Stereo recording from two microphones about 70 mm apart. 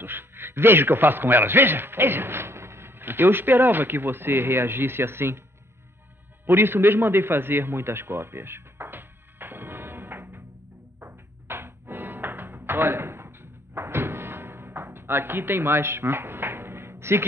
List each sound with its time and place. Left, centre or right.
0.0 s a man's voice: right
6.4 s a sound: right
11.0 s music: right